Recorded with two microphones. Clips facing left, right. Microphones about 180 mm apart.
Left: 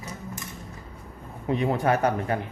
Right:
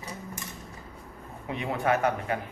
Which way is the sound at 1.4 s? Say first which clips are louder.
Left 4 dB; 40° left (ahead or behind).